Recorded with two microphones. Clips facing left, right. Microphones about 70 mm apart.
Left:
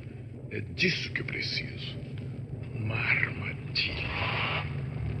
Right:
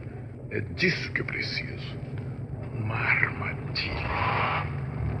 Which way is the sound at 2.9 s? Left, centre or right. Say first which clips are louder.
Right 4 dB; right.